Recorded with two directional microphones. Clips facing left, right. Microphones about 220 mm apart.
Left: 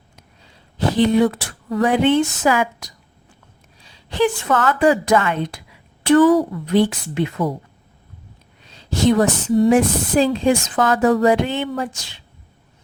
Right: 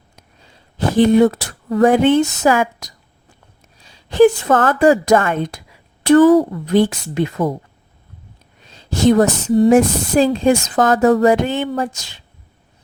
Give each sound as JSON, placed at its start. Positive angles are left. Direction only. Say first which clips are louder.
{"t": 0.9, "sound": "a woman's voice", "louder": "right 4 dB", "side_deg": -45}
{"t": 8.9, "sound": "speech", "louder": "right 3 dB", "side_deg": -45}